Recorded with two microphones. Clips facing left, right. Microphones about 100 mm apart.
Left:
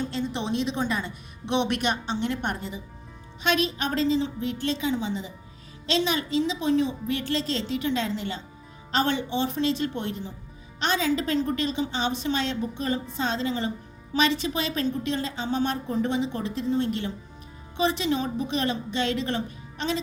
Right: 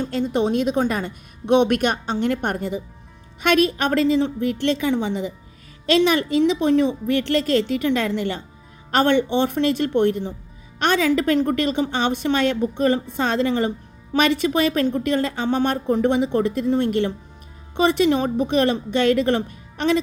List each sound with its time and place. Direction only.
0.0 s a woman's voice: 50° right (ahead or behind)